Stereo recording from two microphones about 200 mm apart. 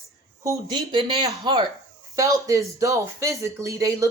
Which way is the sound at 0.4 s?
20° right (ahead or behind).